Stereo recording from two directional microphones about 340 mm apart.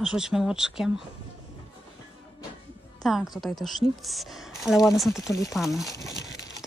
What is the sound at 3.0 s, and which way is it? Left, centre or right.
Speech, centre.